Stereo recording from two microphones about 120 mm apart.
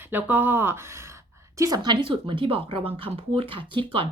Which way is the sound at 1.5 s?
30° right (ahead or behind).